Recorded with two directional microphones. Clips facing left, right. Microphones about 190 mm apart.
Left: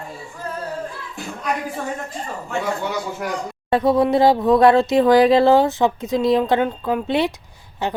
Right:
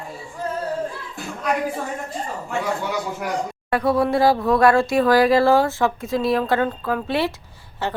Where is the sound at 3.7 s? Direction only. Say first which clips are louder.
Left 3 dB; 20° left (ahead or behind).